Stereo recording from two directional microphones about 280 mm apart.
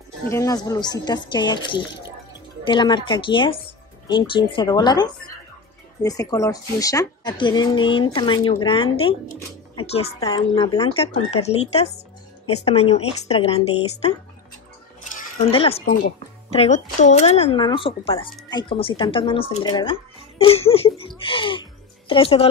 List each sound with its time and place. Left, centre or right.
0.3 s speech: centre
15.4 s speech: centre